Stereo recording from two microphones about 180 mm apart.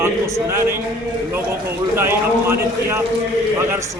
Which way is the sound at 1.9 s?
15° right (ahead or behind).